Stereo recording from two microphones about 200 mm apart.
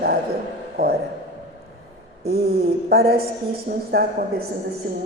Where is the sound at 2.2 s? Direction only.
50° right (ahead or behind).